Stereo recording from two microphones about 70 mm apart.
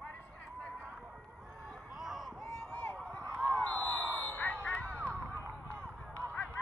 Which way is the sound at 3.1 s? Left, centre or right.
Centre.